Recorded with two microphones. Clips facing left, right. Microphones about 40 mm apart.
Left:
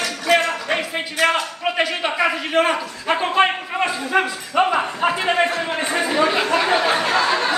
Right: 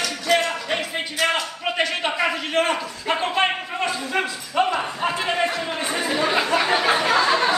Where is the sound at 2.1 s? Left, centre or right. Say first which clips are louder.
Left 5 dB; centre.